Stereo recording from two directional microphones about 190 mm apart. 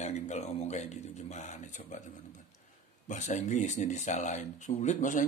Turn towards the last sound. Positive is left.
turn(degrees=40)  # may be behind; listen again after turning